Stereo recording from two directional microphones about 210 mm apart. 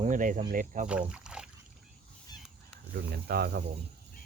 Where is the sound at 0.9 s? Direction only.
5° right (ahead or behind).